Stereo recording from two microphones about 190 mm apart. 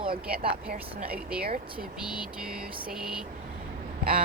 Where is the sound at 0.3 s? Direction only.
50° right (ahead or behind).